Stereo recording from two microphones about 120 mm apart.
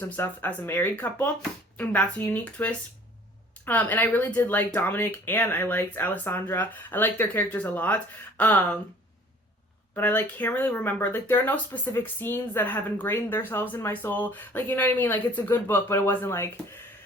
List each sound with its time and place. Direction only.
0.0 s speech: 15° left (ahead or behind)
9.9 s speech: 15° left (ahead or behind)